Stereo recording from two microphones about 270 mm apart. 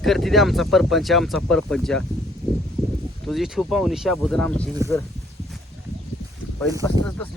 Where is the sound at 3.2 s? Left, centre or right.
Centre.